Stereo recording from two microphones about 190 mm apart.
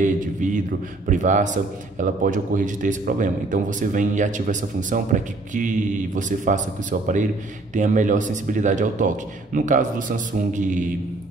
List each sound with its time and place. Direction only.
0.0 s a man's voice: 40° right (ahead or behind)